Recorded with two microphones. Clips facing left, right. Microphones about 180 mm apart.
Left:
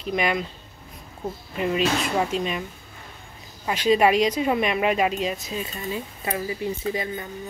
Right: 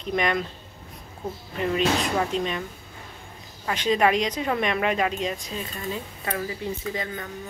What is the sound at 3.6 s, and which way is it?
Speech, 10° left (ahead or behind).